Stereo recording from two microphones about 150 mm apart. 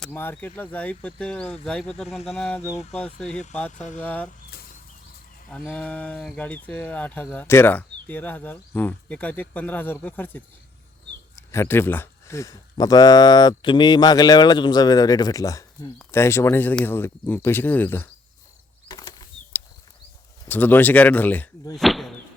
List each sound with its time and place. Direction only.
0.1 s speech: 15° left (ahead or behind)
2.6 s speech: 20° left (ahead or behind)
3.2 s speech: 5° left (ahead or behind)
5.5 s speech: 10° left (ahead or behind)
18.9 s bird flight: 25° left (ahead or behind)
20.5 s speech: 10° left (ahead or behind)
21.8 s a sound: centre (ahead or behind)